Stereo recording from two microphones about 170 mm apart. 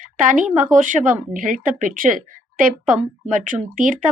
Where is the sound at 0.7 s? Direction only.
50° right (ahead or behind).